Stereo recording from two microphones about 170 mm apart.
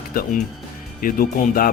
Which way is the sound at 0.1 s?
60° left (ahead or behind).